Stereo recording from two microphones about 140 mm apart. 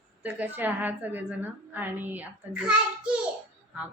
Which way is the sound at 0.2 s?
10° right (ahead or behind).